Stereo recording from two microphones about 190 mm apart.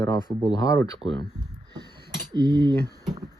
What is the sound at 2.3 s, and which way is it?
Cutlery, 25° right (ahead or behind).